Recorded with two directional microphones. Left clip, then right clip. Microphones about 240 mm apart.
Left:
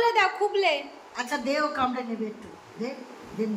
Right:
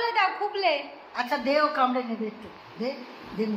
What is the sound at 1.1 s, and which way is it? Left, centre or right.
Speech, right.